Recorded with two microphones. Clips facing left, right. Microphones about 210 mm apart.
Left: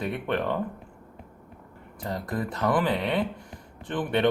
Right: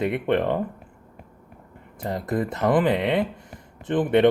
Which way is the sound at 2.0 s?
20° right (ahead or behind).